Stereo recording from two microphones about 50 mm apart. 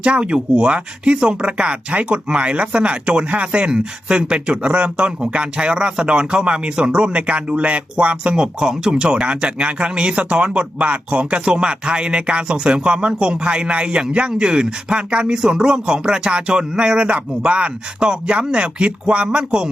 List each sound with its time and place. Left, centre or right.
0.0 s speech: right